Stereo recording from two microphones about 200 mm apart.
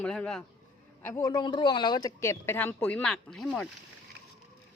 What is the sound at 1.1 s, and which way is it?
Speech, 20° left (ahead or behind).